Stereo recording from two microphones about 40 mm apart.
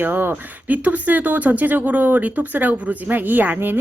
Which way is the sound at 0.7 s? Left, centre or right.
Right.